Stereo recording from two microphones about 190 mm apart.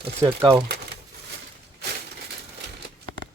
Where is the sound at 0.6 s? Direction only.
55° right (ahead or behind).